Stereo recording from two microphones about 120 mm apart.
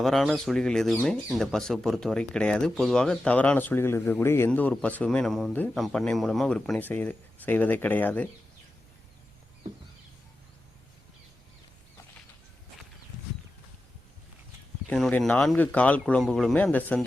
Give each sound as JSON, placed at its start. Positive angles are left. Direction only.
{"t": 0.0, "sound": "speech", "side_deg": 0}
{"t": 14.8, "sound": "speech", "side_deg": 5}